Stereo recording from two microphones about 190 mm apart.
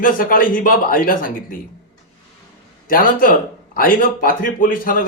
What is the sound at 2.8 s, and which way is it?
A man's voice, 50° left (ahead or behind).